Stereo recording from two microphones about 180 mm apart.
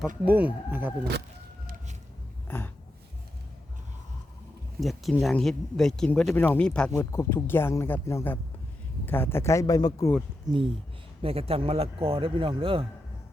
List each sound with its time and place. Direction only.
0.3 s speech: 10° right (ahead or behind)
4.8 s speech: centre (ahead or behind); by 10.1 s 20° left (ahead or behind)
10.4 s speech: 30° right (ahead or behind)